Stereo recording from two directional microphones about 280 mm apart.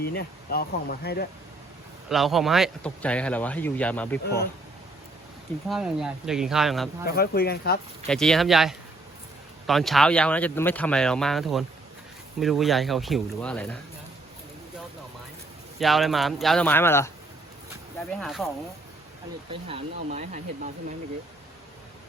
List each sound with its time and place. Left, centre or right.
0.0 s speech: left
2.0 s speech: centre
5.6 s speech: centre
7.0 s speech: left
8.0 s speech: centre
15.8 s speech: centre
18.1 s speech: centre
19.6 s speech: right